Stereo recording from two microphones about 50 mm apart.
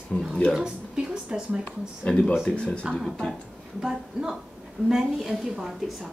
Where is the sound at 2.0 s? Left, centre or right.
Centre.